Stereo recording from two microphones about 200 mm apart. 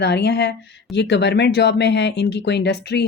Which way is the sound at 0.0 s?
55° left (ahead or behind).